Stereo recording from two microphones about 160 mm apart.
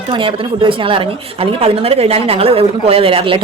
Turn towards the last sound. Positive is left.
turn(degrees=-35)  # may be behind; listen again after turning